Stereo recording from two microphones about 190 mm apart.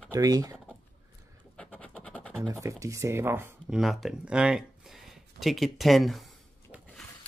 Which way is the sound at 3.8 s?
Centre (ahead or behind).